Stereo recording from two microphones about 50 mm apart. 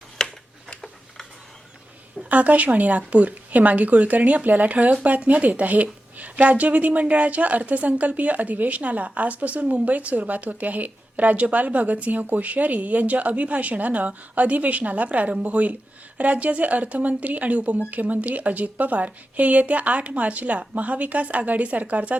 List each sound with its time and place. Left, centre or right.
0.2 s tick-tock: centre
2.3 s a woman's voice: right